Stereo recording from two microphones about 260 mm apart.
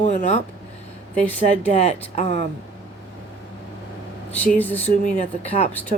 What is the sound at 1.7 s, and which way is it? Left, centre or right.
Speech, left.